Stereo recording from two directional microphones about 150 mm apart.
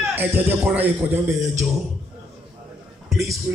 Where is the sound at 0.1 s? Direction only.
10° right (ahead or behind).